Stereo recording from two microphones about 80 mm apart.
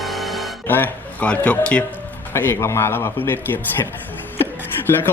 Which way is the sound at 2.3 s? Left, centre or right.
Left.